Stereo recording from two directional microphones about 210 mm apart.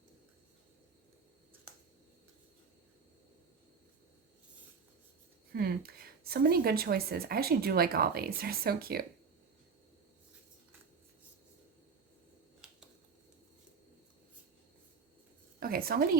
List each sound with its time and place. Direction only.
5.5 s speech: 45° right (ahead or behind)
15.6 s a woman's voice: 45° right (ahead or behind)